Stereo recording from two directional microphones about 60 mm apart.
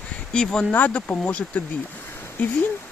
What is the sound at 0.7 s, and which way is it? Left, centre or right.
Speech, left.